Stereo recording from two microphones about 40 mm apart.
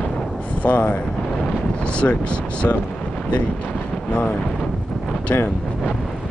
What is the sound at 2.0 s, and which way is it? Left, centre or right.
Speech, left.